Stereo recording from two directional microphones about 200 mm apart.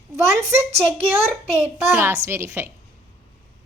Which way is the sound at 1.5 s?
10° right (ahead or behind).